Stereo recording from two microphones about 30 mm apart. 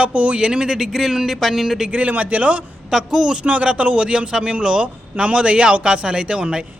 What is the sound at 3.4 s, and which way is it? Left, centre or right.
A man's voice, right.